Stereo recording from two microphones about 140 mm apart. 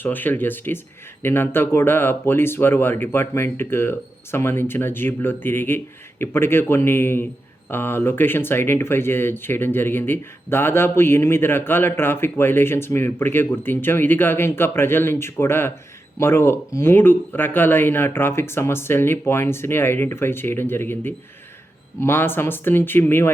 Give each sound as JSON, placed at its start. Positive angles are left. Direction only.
{"t": 0.0, "sound": "speech", "side_deg": 15}